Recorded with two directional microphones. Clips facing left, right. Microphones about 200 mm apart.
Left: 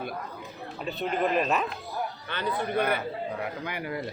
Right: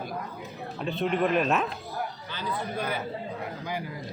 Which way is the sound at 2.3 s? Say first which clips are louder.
Left 6 dB; 60° left (ahead or behind).